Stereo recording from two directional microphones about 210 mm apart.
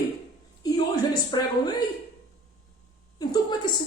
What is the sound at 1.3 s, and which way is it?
Speech, 20° left (ahead or behind).